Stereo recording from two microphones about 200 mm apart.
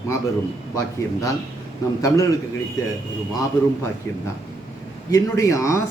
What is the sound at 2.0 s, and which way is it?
Speech, 15° left (ahead or behind).